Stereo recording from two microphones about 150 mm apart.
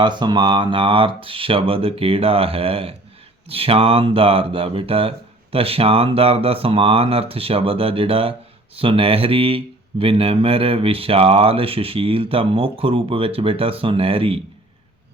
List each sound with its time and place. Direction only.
0.0 s speech: 30° right (ahead or behind)